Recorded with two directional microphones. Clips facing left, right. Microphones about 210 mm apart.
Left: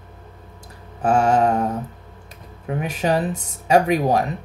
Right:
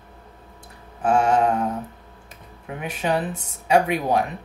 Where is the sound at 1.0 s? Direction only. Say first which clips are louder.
Left 2 dB; 45° left (ahead or behind).